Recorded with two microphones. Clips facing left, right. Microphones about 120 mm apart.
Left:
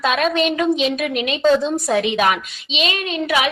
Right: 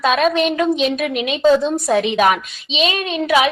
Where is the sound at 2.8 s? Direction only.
20° right (ahead or behind).